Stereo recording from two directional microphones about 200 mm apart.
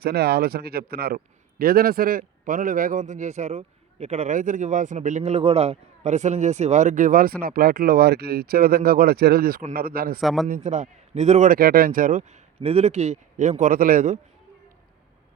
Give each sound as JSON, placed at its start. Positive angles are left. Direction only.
{"t": 0.0, "sound": "a man's voice", "side_deg": -55}
{"t": 10.2, "sound": "a man's voice", "side_deg": 0}
{"t": 10.5, "sound": "speech", "side_deg": -40}